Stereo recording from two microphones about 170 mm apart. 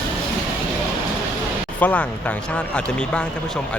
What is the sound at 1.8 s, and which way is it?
Speech, 10° left (ahead or behind).